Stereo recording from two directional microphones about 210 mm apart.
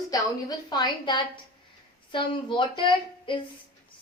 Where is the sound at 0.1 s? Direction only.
15° left (ahead or behind).